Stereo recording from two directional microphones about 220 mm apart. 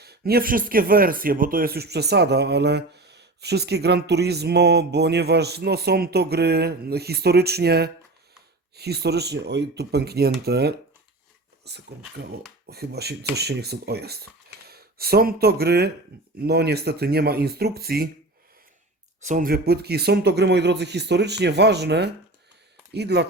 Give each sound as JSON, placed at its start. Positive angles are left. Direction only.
{"t": 0.0, "sound": "speech", "side_deg": -45}
{"t": 19.2, "sound": "speech", "side_deg": -35}